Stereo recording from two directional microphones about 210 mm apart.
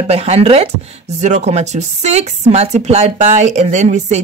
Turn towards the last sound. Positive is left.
turn(degrees=-35)  # may be behind; listen again after turning